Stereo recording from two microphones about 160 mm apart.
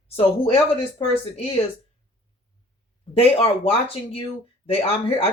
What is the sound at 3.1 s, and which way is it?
Speech, 40° left (ahead or behind).